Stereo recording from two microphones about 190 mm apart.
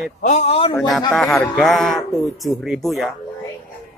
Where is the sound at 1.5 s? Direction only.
Centre (ahead or behind).